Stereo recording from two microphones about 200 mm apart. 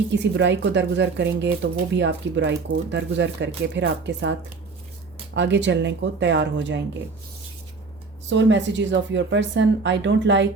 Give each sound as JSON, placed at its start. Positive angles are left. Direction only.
{"t": 0.1, "sound": "speech", "side_deg": -60}
{"t": 8.3, "sound": "speech", "side_deg": -65}